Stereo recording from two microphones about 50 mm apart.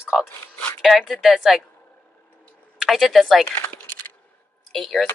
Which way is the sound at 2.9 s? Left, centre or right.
Centre.